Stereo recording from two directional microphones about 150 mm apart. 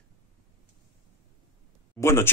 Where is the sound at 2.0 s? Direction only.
20° left (ahead or behind).